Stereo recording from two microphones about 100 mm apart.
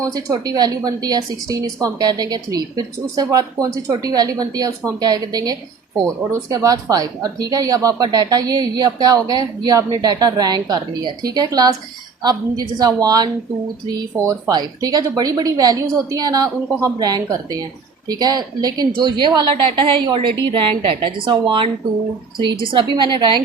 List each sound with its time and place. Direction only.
0.0 s a woman's voice: 35° right (ahead or behind); by 23.4 s 50° right (ahead or behind)